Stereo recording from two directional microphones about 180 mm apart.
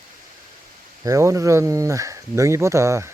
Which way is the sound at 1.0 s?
20° right (ahead or behind).